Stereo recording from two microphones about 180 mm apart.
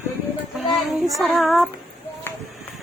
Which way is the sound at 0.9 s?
Centre (ahead or behind).